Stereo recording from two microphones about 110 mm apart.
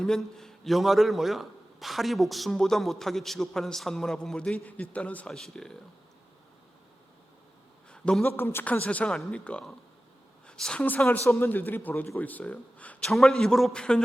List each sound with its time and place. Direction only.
0.0 s a man's voice: 5° left (ahead or behind)
7.9 s a sound: 5° left (ahead or behind)
8.4 s a woman's voice: 20° left (ahead or behind)
13.1 s a man's voice: centre (ahead or behind)